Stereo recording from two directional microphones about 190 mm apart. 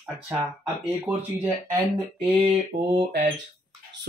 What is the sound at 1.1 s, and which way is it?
Speech, 15° right (ahead or behind).